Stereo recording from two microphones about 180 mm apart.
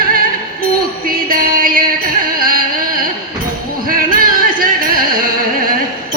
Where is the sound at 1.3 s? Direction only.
50° right (ahead or behind).